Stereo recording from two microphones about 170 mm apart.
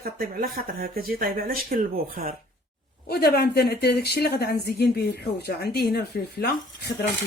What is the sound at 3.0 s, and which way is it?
A woman's voice, 70° left (ahead or behind).